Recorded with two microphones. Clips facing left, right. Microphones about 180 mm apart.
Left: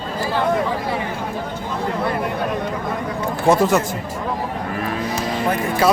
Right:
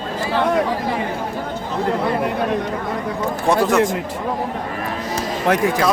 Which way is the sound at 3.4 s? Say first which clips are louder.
Left 2 dB; centre (ahead or behind).